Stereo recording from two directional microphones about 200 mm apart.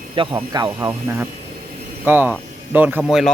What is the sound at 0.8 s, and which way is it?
Speech, 10° right (ahead or behind).